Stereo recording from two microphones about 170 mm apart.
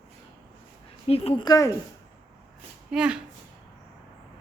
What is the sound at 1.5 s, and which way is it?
Speech, 20° left (ahead or behind).